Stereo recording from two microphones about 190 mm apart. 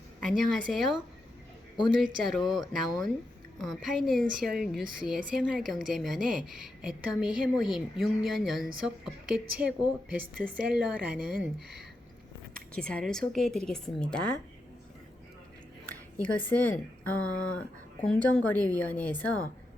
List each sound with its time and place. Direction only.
0.2 s speech: centre (ahead or behind)
12.7 s speech: 5° left (ahead or behind)
15.9 s a sound: 5° left (ahead or behind)
16.7 s speech: 10° left (ahead or behind)